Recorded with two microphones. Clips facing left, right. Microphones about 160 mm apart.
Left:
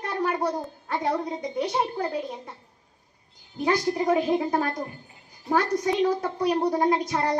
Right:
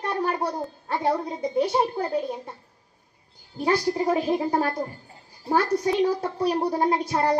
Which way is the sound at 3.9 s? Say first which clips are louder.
Even; 30° right (ahead or behind).